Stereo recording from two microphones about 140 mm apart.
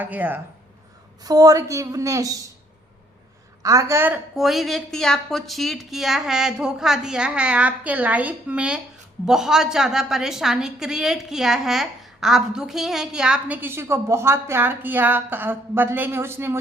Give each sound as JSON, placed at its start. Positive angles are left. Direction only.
{"t": 0.0, "sound": "speech", "side_deg": -10}
{"t": 1.2, "sound": "a woman's voice", "side_deg": -25}
{"t": 3.6, "sound": "a woman's voice", "side_deg": -25}
{"t": 4.4, "sound": "a woman's voice", "side_deg": 0}